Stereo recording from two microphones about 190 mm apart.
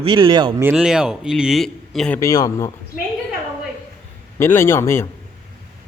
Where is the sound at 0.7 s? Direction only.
5° right (ahead or behind).